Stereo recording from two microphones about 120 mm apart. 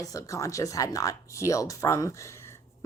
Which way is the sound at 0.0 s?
30° left (ahead or behind).